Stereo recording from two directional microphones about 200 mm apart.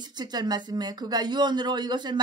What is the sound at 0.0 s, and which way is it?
Speech, 20° right (ahead or behind).